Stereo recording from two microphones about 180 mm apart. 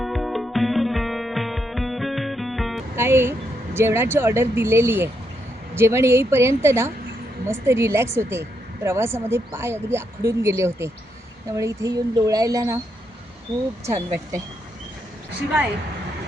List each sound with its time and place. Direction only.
0.0 s music: centre (ahead or behind)
2.9 s a woman's voice: 15° right (ahead or behind)
13.8 s a woman's voice: 15° right (ahead or behind)